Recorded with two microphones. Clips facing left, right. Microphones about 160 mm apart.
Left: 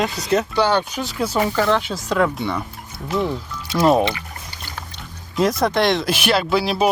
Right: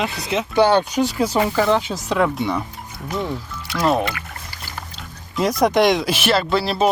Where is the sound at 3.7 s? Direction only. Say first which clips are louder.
Left 3 dB; 20° left (ahead or behind).